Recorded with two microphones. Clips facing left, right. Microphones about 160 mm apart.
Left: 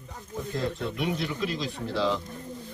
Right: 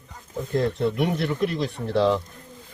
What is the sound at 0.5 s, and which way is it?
Speech, 60° right (ahead or behind).